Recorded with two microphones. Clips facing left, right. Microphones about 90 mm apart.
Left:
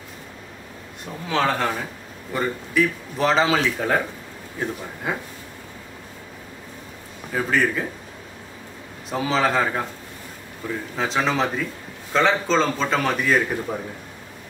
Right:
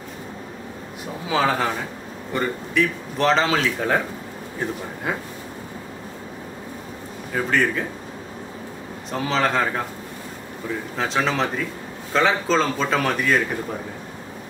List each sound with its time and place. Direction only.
1.2 s a man's voice: 5° right (ahead or behind)
5.1 s a man's voice: centre (ahead or behind)
7.3 s a man's voice: 5° left (ahead or behind)
9.1 s a man's voice: 5° left (ahead or behind)
10.6 s a man's voice: 20° right (ahead or behind)
11.0 s a man's voice: centre (ahead or behind)